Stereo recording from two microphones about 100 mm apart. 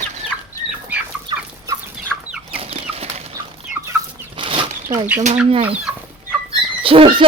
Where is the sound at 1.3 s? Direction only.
50° right (ahead or behind).